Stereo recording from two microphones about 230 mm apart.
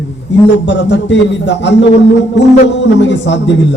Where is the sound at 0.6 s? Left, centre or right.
Left.